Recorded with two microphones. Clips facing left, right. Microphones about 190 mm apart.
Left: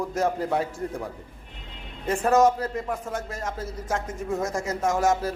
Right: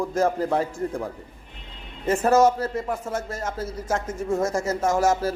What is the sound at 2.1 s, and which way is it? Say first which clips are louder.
A man's voice: right 2 dB; centre (ahead or behind).